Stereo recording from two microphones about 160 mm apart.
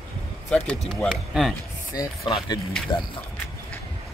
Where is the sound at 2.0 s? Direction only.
25° left (ahead or behind).